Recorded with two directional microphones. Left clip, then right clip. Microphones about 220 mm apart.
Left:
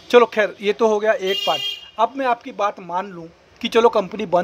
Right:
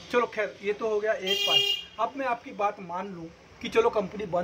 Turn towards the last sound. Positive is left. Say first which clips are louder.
# left 9 dB
turn(degrees=45)  # may be behind; listen again after turning